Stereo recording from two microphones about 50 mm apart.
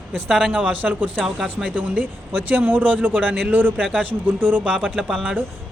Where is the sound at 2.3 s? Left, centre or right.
Right.